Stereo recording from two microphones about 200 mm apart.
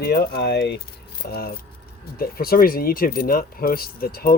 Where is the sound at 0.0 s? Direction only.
50° left (ahead or behind).